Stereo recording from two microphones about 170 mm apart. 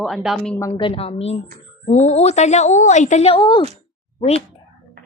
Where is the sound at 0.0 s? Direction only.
Centre (ahead or behind).